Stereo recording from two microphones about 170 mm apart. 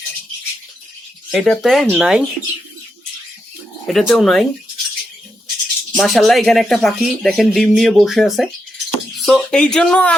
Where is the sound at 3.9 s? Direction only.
Centre (ahead or behind).